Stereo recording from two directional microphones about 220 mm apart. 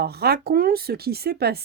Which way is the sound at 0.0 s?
45° right (ahead or behind).